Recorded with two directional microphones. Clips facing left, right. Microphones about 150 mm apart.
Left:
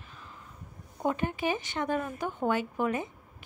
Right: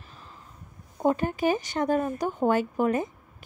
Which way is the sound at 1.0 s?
40° right (ahead or behind).